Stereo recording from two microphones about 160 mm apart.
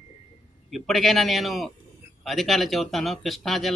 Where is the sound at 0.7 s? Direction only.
Centre (ahead or behind).